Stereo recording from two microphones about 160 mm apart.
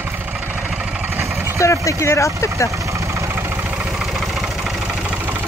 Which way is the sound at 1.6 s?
20° left (ahead or behind).